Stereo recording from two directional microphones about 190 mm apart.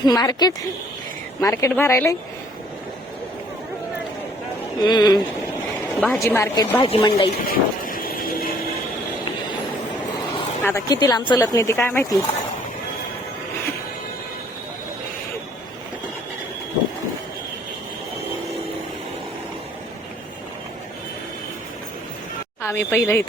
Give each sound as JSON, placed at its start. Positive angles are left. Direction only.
{"t": 0.0, "sound": "speech", "side_deg": 20}
{"t": 4.8, "sound": "speech", "side_deg": 20}
{"t": 6.8, "sound": "speech", "side_deg": 25}
{"t": 7.4, "sound": "vehicle", "side_deg": 50}
{"t": 10.6, "sound": "speech", "side_deg": 15}
{"t": 22.6, "sound": "speech", "side_deg": 10}